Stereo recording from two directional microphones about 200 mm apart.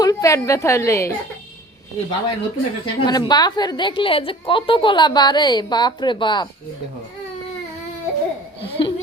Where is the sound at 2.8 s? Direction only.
25° left (ahead or behind).